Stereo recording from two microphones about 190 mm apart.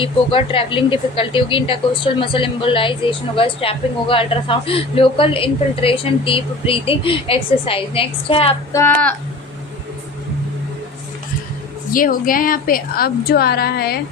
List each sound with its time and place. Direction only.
0.0 s speech: 25° left (ahead or behind)
8.7 s speech: 10° left (ahead or behind)
11.9 s a woman's voice: 45° left (ahead or behind)